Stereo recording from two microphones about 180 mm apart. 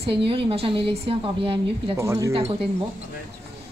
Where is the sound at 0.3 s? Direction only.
30° right (ahead or behind).